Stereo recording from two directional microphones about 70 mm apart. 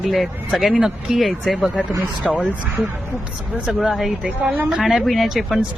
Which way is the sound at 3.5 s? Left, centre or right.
Centre.